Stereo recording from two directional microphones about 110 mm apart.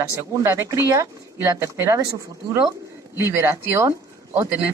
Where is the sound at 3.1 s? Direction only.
20° right (ahead or behind).